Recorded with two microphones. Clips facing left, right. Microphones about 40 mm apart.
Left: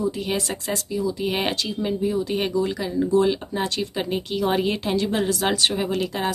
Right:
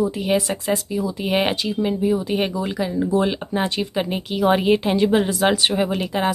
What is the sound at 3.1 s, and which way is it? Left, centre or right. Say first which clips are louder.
Speech: even; right.